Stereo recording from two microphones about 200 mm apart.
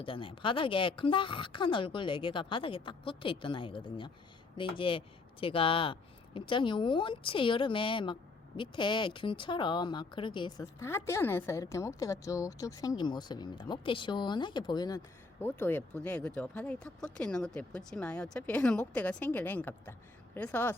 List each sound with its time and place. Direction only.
0.0 s speech: 25° left (ahead or behind); by 20.7 s 10° left (ahead or behind)